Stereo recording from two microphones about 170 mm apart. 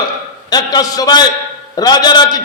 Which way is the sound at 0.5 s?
20° left (ahead or behind).